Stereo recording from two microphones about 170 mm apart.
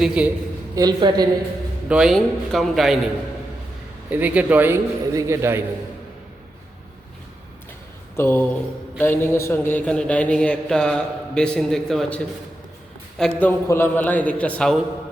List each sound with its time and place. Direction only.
0.0 s a man's voice: 5° right (ahead or behind)
0.8 s a woman's voice: 25° right (ahead or behind)
1.9 s a man's voice: 5° right (ahead or behind)
4.1 s a man's voice: 10° right (ahead or behind)
8.1 s a man's voice: 15° left (ahead or behind)